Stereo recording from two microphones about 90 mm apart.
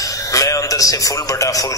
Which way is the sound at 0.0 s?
40° left (ahead or behind).